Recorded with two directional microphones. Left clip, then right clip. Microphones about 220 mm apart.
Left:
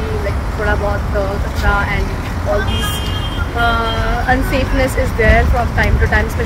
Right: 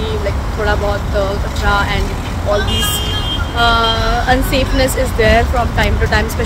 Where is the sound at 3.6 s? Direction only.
20° right (ahead or behind).